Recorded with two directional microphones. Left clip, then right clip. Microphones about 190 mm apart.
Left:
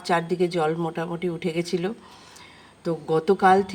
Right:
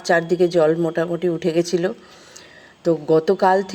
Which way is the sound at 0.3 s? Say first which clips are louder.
Right 7 dB; 10° right (ahead or behind).